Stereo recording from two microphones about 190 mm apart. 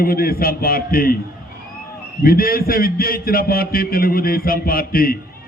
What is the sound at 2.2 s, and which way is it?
Speech, 50° left (ahead or behind).